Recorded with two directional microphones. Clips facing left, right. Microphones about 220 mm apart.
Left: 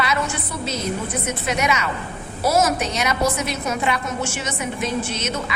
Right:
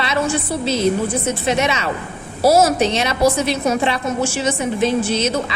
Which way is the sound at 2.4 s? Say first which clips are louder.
Right 6 dB; 35° right (ahead or behind).